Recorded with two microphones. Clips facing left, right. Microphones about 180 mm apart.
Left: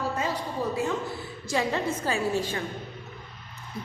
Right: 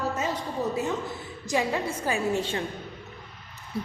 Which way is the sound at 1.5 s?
15° right (ahead or behind).